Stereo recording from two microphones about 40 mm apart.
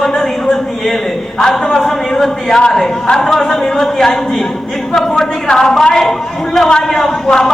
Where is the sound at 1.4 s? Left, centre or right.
Centre.